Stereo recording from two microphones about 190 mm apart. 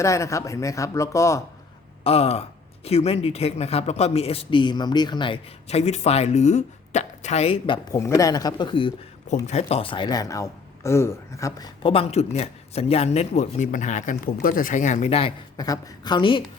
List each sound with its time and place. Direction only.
0.0 s speech: 15° left (ahead or behind)
2.0 s a man's voice: 35° left (ahead or behind)
7.9 s a man's voice: 15° left (ahead or behind)